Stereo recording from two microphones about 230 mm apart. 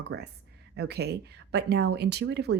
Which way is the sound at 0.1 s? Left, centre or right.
Right.